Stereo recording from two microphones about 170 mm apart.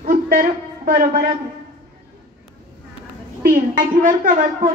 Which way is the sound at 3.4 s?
55° right (ahead or behind).